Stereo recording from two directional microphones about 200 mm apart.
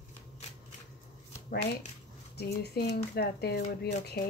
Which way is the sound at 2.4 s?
55° left (ahead or behind).